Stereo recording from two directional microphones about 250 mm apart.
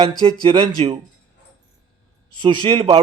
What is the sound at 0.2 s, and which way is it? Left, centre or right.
Speech, right.